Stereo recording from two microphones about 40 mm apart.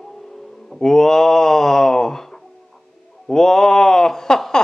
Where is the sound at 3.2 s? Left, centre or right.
Centre.